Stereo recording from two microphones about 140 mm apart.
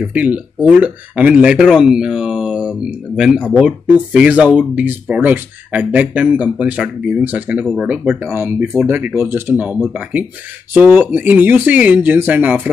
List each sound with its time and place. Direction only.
0.0 s speech: 10° right (ahead or behind)
7.6 s speech: centre (ahead or behind)
7.9 s speech: 15° right (ahead or behind)